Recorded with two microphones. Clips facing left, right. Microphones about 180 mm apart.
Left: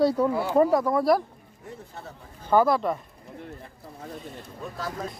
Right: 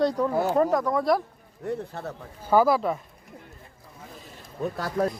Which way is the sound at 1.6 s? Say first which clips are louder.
Right 10 dB; 65° right (ahead or behind).